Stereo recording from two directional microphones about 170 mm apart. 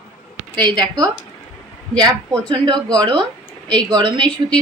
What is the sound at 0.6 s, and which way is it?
Speech, 25° right (ahead or behind).